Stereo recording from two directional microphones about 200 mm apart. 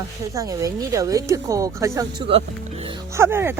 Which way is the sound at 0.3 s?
15° right (ahead or behind).